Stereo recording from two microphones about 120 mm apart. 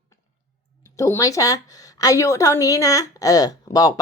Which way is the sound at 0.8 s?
25° left (ahead or behind).